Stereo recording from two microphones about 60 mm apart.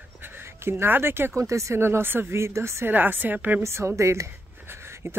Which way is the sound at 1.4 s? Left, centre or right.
Right.